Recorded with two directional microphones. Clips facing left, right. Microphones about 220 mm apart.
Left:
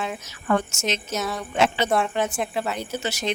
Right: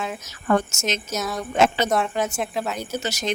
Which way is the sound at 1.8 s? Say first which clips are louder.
Even; centre (ahead or behind).